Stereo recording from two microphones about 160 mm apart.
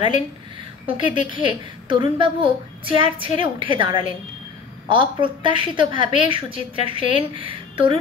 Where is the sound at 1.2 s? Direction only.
30° right (ahead or behind).